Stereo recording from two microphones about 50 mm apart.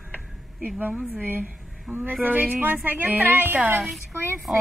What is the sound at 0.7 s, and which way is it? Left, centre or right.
Speech, right.